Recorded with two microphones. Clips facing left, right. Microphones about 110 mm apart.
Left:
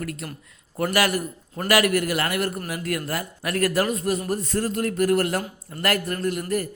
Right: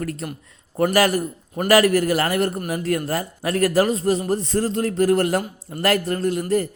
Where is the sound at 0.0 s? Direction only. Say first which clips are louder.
Right 4 dB; 35° right (ahead or behind).